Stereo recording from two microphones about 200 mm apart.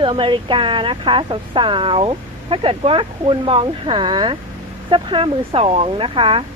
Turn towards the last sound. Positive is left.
turn(degrees=-25)  # may be behind; listen again after turning